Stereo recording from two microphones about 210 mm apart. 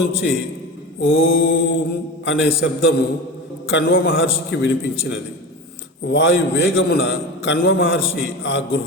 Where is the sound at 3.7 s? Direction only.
50° left (ahead or behind).